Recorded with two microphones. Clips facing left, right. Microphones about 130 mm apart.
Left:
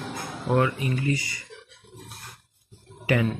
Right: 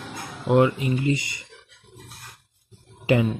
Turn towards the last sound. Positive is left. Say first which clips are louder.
# right 3 dB
turn(degrees=-20)  # may be behind; listen again after turning